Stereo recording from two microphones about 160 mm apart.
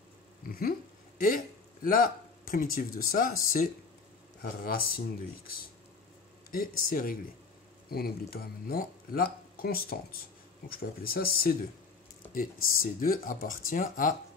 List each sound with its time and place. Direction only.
0.5 s speech: 65° left (ahead or behind)
6.5 s speech: 60° left (ahead or behind)